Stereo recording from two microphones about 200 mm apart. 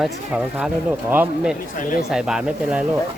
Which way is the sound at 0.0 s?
Centre (ahead or behind).